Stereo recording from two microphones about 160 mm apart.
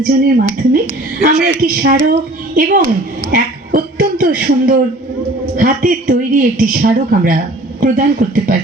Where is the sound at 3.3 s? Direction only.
60° right (ahead or behind).